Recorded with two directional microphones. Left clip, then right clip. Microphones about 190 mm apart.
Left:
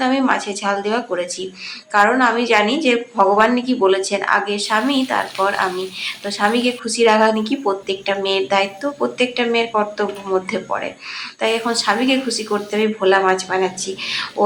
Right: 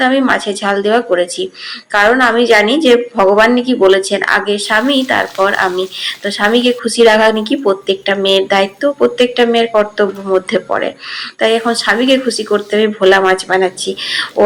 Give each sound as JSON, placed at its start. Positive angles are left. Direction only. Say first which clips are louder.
{"t": 0.0, "sound": "a woman's voice", "louder": "right 6 dB", "side_deg": -15}